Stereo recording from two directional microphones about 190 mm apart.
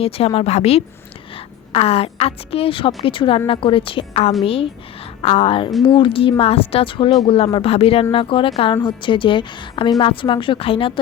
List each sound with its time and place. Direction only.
0.0 s a woman's voice: 30° left (ahead or behind)